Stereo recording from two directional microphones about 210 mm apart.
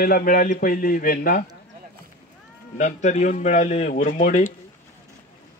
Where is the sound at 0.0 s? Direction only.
45° left (ahead or behind).